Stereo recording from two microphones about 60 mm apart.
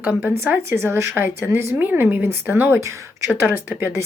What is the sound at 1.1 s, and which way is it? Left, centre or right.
A woman's voice, right.